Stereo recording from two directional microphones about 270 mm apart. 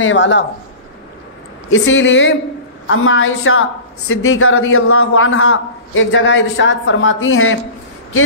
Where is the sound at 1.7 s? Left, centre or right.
Left.